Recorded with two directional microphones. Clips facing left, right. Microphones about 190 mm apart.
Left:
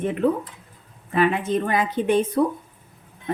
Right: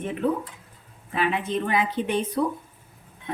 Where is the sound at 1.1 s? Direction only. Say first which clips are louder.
Left 5 dB; 50° left (ahead or behind).